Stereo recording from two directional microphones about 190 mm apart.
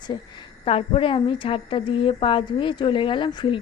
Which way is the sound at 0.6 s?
30° left (ahead or behind).